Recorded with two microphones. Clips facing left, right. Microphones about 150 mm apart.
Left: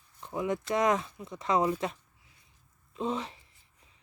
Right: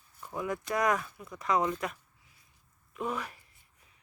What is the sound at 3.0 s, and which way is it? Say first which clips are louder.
Speech: left 2 dB; 25° left (ahead or behind).